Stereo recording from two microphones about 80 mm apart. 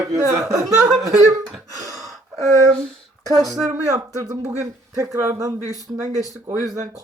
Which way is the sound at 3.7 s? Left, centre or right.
Right.